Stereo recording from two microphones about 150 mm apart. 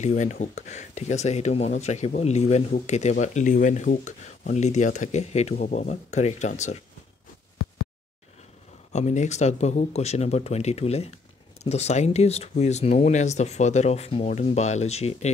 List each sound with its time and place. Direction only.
0.0 s speech: 55° left (ahead or behind)
8.9 s speech: 50° left (ahead or behind)